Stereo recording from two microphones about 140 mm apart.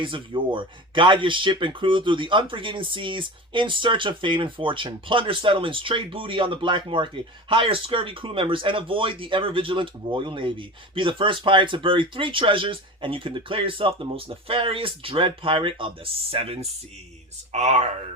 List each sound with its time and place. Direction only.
0.0 s speech: 35° right (ahead or behind)
17.5 s speech: 55° right (ahead or behind)